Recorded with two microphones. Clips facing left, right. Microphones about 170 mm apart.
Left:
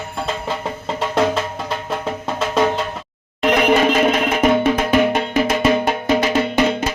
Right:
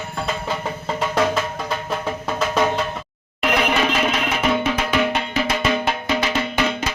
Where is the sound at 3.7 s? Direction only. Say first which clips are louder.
Left 6 dB; 45° left (ahead or behind).